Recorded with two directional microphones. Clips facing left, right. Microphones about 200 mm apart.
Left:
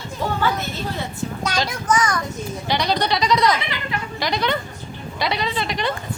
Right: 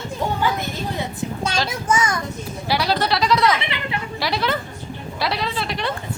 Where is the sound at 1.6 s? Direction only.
25° right (ahead or behind).